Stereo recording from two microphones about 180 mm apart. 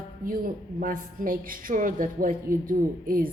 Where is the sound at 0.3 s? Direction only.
50° right (ahead or behind).